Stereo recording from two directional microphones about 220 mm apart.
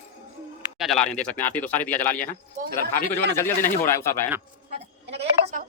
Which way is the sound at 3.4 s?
10° left (ahead or behind).